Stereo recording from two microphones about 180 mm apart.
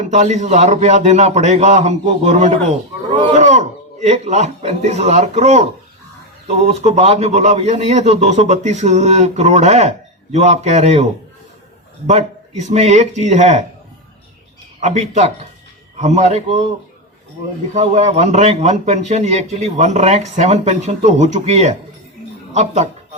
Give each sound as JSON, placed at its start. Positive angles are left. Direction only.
{"t": 0.1, "sound": "a man's voice", "side_deg": -40}
{"t": 12.0, "sound": "a man's voice", "side_deg": -40}
{"t": 14.8, "sound": "a man's voice", "side_deg": -40}
{"t": 17.7, "sound": "a man's voice", "side_deg": -40}